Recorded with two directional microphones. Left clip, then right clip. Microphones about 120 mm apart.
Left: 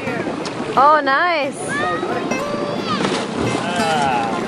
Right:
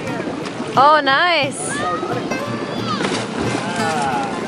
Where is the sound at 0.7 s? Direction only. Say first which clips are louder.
Right 1 dB; 5° right (ahead or behind).